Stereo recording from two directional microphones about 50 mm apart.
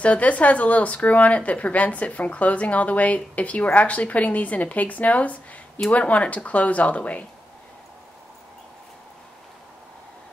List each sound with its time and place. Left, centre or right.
0.0 s speech: left